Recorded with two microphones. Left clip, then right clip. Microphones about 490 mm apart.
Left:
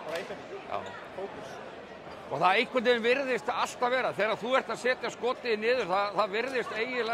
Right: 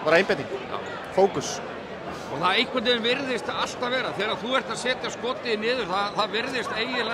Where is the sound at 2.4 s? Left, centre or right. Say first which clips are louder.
Right 2 dB; left.